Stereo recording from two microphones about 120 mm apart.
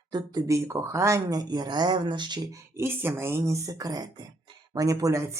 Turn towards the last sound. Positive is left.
turn(degrees=-25)  # may be behind; listen again after turning